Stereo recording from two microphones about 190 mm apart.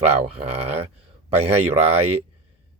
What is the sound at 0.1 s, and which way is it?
Speech, 30° right (ahead or behind).